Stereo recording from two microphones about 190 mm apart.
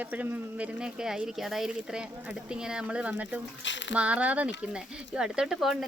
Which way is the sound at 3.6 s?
75° left (ahead or behind).